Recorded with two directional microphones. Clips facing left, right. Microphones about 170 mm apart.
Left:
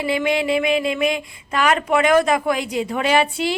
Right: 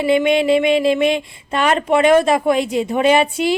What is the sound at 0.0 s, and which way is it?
A woman's voice, 20° right (ahead or behind).